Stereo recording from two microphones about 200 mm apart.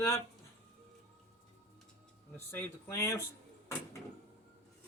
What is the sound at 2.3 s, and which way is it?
Speech, 10° left (ahead or behind).